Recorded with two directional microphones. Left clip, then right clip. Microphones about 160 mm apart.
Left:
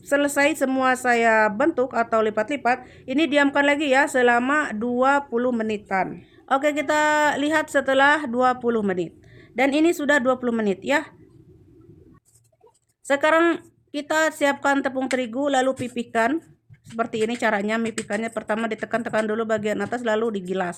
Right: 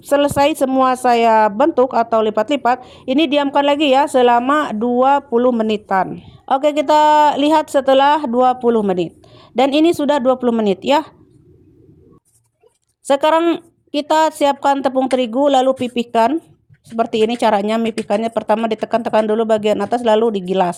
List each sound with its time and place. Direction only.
0.0 s a woman's voice: 35° right (ahead or behind)
5.6 s a woman's voice: 45° right (ahead or behind)
13.1 s a woman's voice: 40° right (ahead or behind)
13.4 s speech: 20° right (ahead or behind)
13.9 s a woman's voice: 35° right (ahead or behind)